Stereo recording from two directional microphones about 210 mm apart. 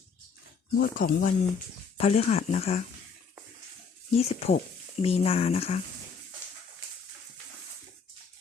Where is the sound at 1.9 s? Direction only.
30° left (ahead or behind).